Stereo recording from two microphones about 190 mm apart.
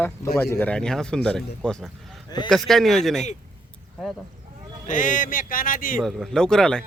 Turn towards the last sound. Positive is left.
turn(degrees=5)  # may be behind; listen again after turning